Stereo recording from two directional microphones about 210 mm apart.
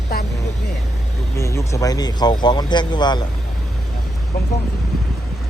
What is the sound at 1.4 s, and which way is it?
Speech, 15° left (ahead or behind).